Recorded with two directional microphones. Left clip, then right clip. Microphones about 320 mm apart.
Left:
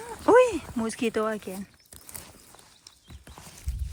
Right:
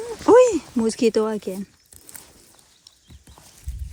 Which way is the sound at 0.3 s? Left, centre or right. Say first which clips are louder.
Right 5 dB; centre.